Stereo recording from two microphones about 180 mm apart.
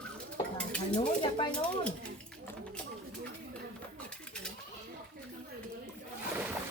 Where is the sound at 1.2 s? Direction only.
25° left (ahead or behind).